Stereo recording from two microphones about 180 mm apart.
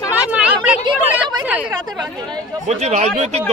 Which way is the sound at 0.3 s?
5° right (ahead or behind).